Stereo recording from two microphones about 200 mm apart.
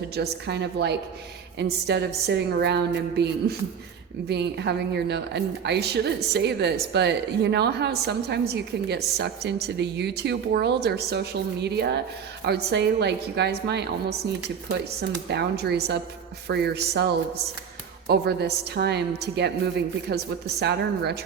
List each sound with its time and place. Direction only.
0.1 s a woman's voice: 55° right (ahead or behind)
4.3 s a woman's voice: 55° right (ahead or behind)
18.1 s a woman's voice: 55° right (ahead or behind)